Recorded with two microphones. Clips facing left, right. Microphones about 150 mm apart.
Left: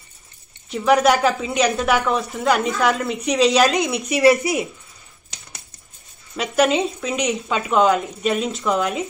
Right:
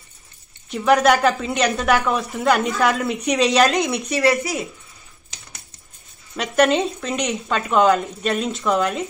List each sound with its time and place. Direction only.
0.7 s a woman's voice: centre (ahead or behind)
4.2 s speech: 25° left (ahead or behind)
6.3 s a woman's voice: 5° left (ahead or behind)